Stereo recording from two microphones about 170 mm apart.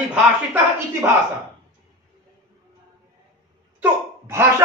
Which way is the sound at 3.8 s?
15° right (ahead or behind).